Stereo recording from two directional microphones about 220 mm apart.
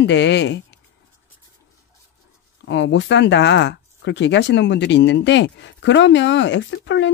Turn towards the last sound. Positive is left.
turn(degrees=55)  # may be behind; listen again after turning